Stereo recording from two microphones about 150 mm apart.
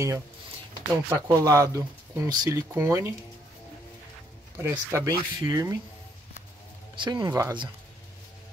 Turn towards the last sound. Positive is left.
turn(degrees=-25)  # may be behind; listen again after turning